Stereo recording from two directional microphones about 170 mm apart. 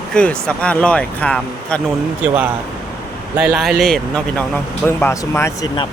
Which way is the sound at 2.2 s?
10° right (ahead or behind).